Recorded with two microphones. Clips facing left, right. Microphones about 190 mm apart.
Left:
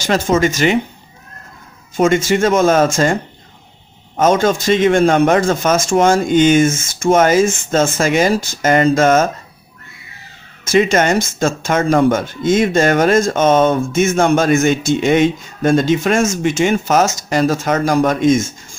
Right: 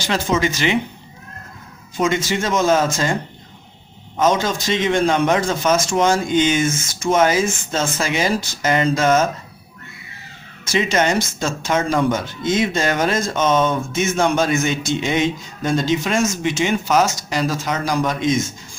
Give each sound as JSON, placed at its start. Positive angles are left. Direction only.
{"t": 0.0, "sound": "speech", "side_deg": 45}
{"t": 2.0, "sound": "speech", "side_deg": 50}
{"t": 4.2, "sound": "speech", "side_deg": 50}
{"t": 10.6, "sound": "speech", "side_deg": 50}